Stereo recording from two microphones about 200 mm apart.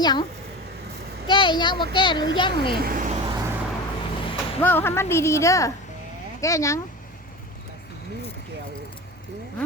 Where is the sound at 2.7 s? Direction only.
50° right (ahead or behind).